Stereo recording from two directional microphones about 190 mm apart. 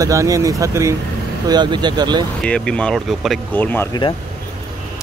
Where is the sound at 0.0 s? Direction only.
15° right (ahead or behind).